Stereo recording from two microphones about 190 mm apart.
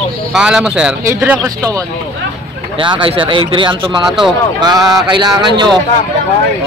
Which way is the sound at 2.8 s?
25° right (ahead or behind).